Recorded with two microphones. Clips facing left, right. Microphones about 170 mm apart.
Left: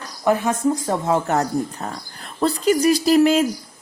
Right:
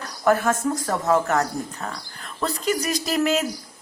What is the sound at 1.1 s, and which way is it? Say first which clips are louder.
A woman's voice: left 1 dB; 30° left (ahead or behind).